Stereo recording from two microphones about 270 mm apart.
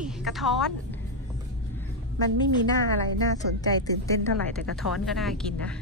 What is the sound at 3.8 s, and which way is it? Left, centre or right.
Speech, centre.